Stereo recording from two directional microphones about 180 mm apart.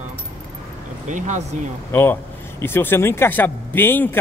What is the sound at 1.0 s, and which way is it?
Speech, 40° right (ahead or behind).